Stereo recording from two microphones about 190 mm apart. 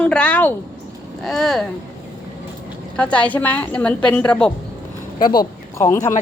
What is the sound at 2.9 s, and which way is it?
A woman's voice, 5° left (ahead or behind).